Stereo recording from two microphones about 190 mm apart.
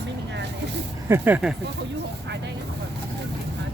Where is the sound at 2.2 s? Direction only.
65° right (ahead or behind).